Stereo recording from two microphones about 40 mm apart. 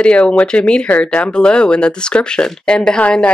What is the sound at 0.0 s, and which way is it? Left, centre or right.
Speech, left.